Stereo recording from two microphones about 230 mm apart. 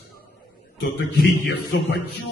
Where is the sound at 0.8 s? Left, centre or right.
Left.